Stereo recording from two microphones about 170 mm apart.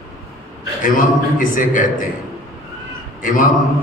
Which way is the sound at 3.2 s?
50° left (ahead or behind).